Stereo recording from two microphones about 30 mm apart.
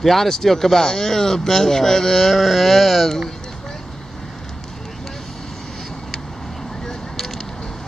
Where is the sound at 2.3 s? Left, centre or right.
Centre.